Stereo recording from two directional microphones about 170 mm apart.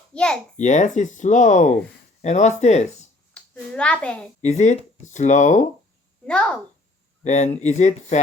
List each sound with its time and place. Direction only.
0.1 s a child's voice: 5° left (ahead or behind)
0.5 s speech: 45° left (ahead or behind)
3.3 s a child's voice: 5° left (ahead or behind)
4.4 s speech: 45° left (ahead or behind)
6.2 s a child's voice: 5° left (ahead or behind)
7.3 s speech: 45° left (ahead or behind)